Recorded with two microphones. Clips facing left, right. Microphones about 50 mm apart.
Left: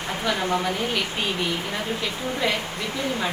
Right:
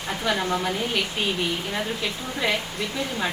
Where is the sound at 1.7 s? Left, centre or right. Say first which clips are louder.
Even; centre.